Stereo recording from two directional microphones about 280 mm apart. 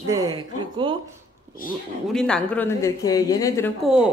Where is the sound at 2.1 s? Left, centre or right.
Centre.